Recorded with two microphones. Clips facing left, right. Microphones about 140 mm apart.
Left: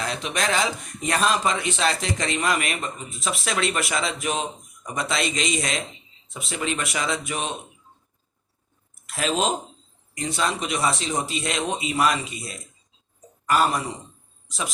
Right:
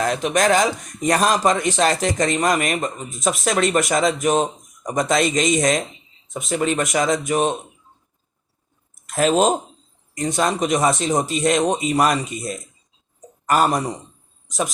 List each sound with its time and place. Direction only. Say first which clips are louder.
0.0 s speech: right 8 dB; 45° right (ahead or behind)
9.0 s a man's voice: right 7 dB; 45° right (ahead or behind)
14.4 s a sound: right 7 dB; 45° right (ahead or behind)